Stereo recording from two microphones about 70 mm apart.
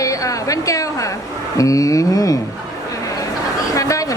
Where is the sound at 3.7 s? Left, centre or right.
Left.